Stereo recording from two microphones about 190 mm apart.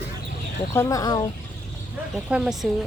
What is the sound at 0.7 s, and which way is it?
Speech, 15° left (ahead or behind).